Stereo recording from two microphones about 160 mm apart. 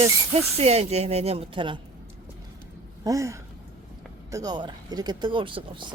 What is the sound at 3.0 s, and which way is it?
Speech, 20° right (ahead or behind).